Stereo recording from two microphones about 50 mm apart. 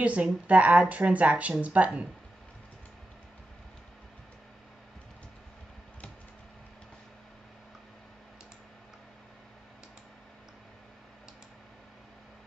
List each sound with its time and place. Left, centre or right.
0.0 s a woman's voice: right